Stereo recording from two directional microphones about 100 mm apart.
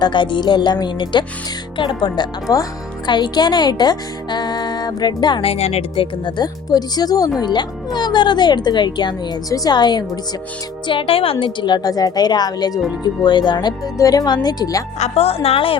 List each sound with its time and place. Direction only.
0.0 s speech: 50° left (ahead or behind)
5.4 s speech: 85° left
6.2 s speech: 45° left (ahead or behind)
10.8 s speech: 60° left (ahead or behind); by 14.8 s 40° left (ahead or behind)
14.9 s speech: 90° left; by 15.8 s 65° left (ahead or behind)